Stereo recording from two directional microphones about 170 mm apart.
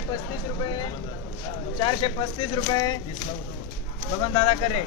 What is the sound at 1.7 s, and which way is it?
A man's voice, 30° left (ahead or behind).